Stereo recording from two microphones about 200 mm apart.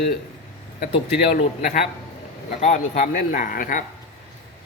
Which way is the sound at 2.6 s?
35° left (ahead or behind).